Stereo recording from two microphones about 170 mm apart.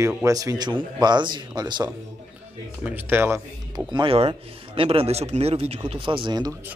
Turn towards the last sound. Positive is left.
turn(degrees=-25)  # may be behind; listen again after turning